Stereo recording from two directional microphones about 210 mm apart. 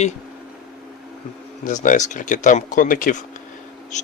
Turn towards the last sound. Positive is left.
turn(degrees=35)  # may be behind; listen again after turning